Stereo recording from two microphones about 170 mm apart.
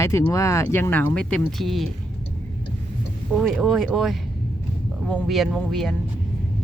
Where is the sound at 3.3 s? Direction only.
Centre (ahead or behind).